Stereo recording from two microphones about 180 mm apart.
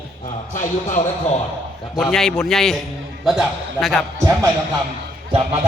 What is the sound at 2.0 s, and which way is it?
A man's voice, centre (ahead or behind).